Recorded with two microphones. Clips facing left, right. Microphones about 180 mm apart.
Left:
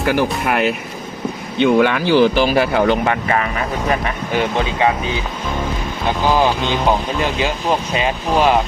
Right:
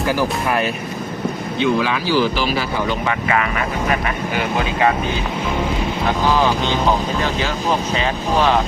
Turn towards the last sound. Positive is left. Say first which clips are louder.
# left 2 dB
turn(degrees=15)  # may be behind; listen again after turning